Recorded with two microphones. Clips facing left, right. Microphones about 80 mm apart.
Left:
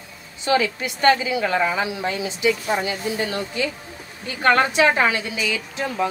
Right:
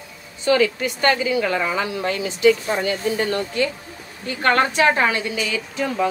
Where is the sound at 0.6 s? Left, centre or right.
Right.